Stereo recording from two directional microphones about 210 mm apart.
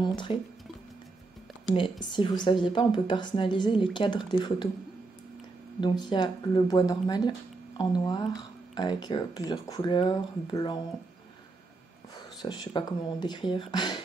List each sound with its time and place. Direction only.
0.0 s speech: 20° left (ahead or behind)
2.1 s speech: 25° left (ahead or behind)
5.8 s speech: 20° left (ahead or behind)
12.4 s speech: 20° left (ahead or behind)